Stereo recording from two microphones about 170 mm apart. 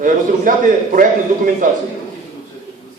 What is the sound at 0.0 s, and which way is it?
A man's voice, 50° right (ahead or behind).